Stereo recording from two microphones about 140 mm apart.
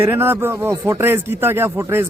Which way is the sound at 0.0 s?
15° right (ahead or behind).